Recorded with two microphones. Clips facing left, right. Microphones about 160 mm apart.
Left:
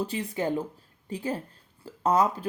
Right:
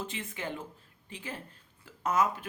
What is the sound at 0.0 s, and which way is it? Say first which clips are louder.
Speech: left 9 dB; 35° left (ahead or behind).